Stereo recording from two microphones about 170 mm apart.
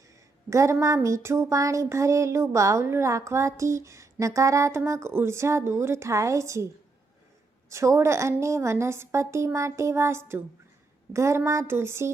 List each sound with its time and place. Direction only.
0.5 s speech: 15° right (ahead or behind)
7.7 s speech: 15° right (ahead or behind)